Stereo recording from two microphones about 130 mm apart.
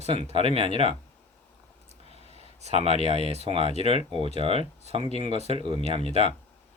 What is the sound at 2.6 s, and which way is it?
Speech, 50° right (ahead or behind).